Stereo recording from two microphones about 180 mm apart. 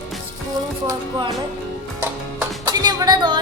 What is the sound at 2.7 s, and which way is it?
Music, 25° right (ahead or behind).